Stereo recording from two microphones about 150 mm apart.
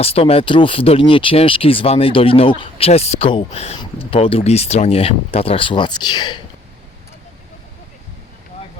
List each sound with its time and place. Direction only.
0.0 s speech: 40° left (ahead or behind)